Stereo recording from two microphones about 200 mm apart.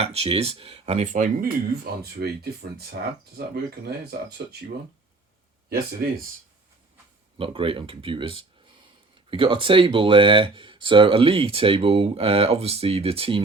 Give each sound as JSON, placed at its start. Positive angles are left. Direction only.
{"t": 0.0, "sound": "speech", "side_deg": -30}
{"t": 5.6, "sound": "speech", "side_deg": -50}
{"t": 7.3, "sound": "speech", "side_deg": -25}